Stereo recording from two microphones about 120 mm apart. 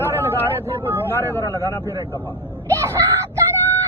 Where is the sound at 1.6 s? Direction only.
30° right (ahead or behind).